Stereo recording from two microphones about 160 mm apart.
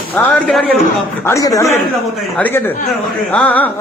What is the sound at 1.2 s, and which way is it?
Speech, 20° left (ahead or behind).